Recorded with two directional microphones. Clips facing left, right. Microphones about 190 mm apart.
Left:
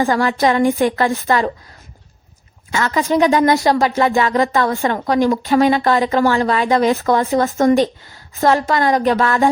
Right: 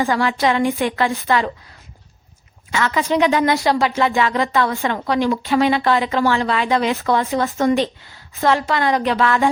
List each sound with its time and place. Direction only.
0.0 s speech: 45° left (ahead or behind)
2.7 s speech: 45° left (ahead or behind)